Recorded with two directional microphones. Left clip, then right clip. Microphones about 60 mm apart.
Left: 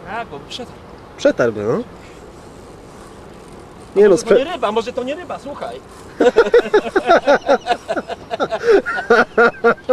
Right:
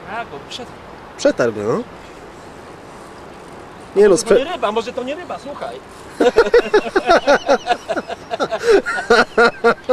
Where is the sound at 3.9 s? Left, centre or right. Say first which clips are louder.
Even; right.